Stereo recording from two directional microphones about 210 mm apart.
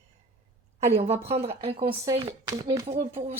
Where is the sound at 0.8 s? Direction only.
30° right (ahead or behind).